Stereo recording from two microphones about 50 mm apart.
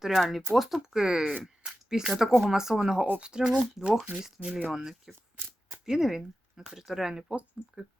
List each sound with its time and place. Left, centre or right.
0.0 s speech: centre
0.9 s speech: centre
4.4 s speech: centre